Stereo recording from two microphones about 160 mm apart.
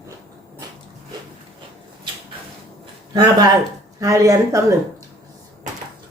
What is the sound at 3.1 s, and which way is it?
Speech, 25° right (ahead or behind).